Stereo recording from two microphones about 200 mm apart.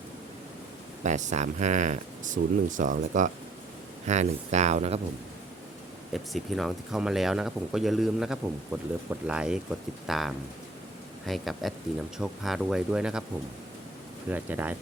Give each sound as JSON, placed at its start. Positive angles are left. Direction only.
{"t": 1.0, "sound": "speech", "side_deg": -35}
{"t": 6.1, "sound": "speech", "side_deg": 0}
{"t": 14.3, "sound": "speech", "side_deg": -10}